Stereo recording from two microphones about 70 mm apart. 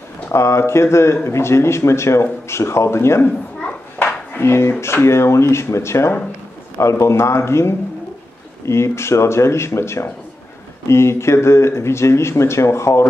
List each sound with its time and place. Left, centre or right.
0.3 s speech: left
4.4 s speech: left